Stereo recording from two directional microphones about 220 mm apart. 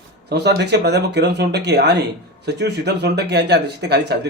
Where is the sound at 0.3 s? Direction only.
50° right (ahead or behind).